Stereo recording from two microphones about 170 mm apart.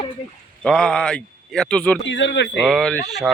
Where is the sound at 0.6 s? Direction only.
5° left (ahead or behind).